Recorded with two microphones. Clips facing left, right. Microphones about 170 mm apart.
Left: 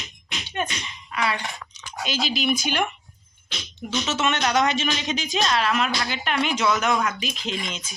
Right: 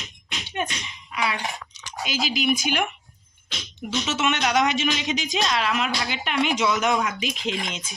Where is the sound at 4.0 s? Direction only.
10° right (ahead or behind).